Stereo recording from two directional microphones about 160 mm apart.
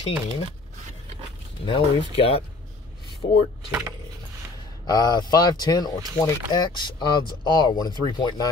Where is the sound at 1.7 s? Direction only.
35° left (ahead or behind).